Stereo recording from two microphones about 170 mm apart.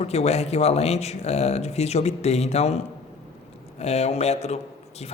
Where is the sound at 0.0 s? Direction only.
40° left (ahead or behind).